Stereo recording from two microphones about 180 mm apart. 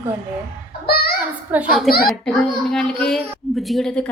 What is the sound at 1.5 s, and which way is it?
Speech, 10° right (ahead or behind).